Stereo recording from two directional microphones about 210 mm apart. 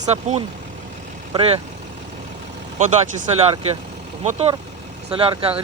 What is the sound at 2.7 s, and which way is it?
Speech, 35° right (ahead or behind).